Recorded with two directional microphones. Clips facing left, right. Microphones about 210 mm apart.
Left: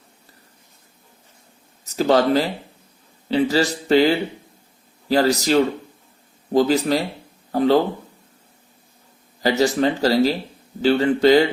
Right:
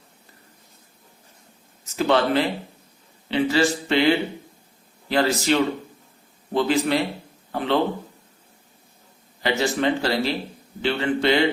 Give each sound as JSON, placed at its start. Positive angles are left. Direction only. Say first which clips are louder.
{"t": 1.8, "sound": "a man's voice", "louder": "left 3 dB", "side_deg": 40}
{"t": 9.4, "sound": "a man's voice", "louder": "left 4 dB", "side_deg": 40}